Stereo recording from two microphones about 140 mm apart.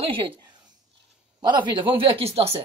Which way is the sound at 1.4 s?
35° right (ahead or behind).